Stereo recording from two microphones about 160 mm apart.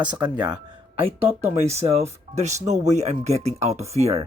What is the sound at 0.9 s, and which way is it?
Speech, 40° right (ahead or behind).